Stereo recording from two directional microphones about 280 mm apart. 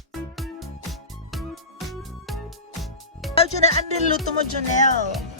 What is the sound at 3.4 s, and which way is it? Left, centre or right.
Speech, left.